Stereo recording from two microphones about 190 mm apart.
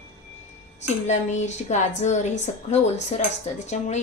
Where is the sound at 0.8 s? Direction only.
40° left (ahead or behind).